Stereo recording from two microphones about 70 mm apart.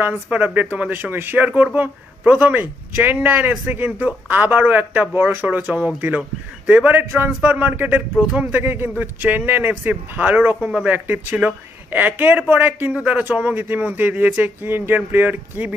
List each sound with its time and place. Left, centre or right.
0.0 s speech: right
6.9 s a man's voice: right
8.5 s speech: right
10.7 s a man's voice: centre